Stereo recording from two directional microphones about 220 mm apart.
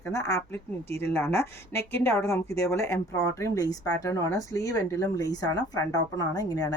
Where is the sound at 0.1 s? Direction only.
15° left (ahead or behind).